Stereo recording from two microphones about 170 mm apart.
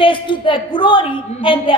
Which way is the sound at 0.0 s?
30° left (ahead or behind).